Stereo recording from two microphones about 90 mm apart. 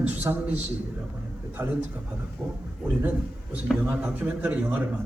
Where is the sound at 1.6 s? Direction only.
25° right (ahead or behind).